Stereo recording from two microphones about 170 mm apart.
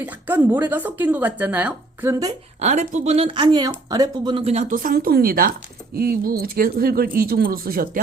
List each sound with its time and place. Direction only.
0.0 s speech: 10° right (ahead or behind)
2.6 s speech: 40° right (ahead or behind)
4.7 s speech: 55° right (ahead or behind)